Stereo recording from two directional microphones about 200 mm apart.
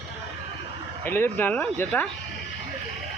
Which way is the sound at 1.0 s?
10° left (ahead or behind).